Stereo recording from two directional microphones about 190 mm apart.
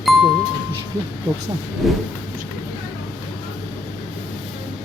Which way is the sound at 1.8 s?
Centre (ahead or behind).